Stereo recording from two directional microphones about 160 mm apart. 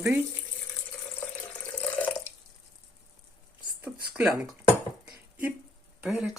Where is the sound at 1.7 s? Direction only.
10° left (ahead or behind).